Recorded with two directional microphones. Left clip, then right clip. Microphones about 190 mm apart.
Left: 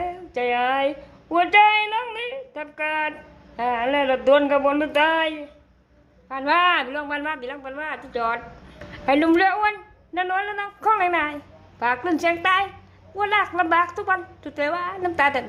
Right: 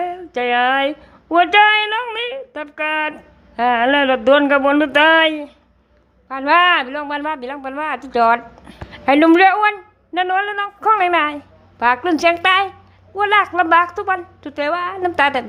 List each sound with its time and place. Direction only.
0.0 s a woman's voice: 20° right (ahead or behind)
8.9 s a woman's voice: 25° right (ahead or behind)